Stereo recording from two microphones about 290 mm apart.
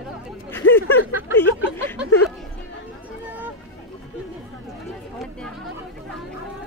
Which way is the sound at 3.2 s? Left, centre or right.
Centre.